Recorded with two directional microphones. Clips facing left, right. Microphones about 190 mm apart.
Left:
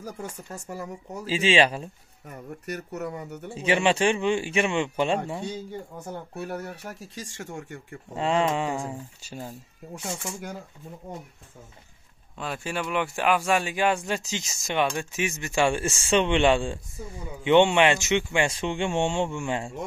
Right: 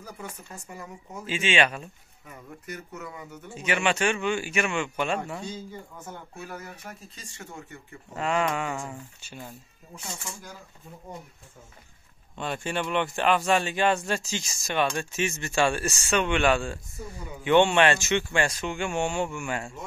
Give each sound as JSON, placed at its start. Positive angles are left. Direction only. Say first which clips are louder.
{"t": 0.0, "sound": "speech", "louder": "left 4 dB", "side_deg": 45}
{"t": 2.9, "sound": "speech", "louder": "left 7 dB", "side_deg": 40}
{"t": 6.6, "sound": "speech", "louder": "left 5 dB", "side_deg": 70}
{"t": 7.4, "sound": "speech", "louder": "left 5 dB", "side_deg": 45}
{"t": 8.1, "sound": "speech", "louder": "left 3 dB", "side_deg": 30}
{"t": 12.4, "sound": "speech", "louder": "right 1 dB", "side_deg": 5}